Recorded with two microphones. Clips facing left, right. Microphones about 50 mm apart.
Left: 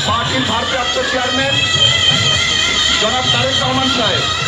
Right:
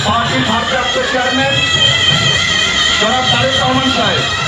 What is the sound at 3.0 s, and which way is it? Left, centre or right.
Speech, right.